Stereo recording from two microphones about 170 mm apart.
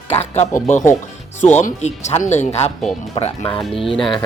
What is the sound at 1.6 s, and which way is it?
Speech, 40° left (ahead or behind).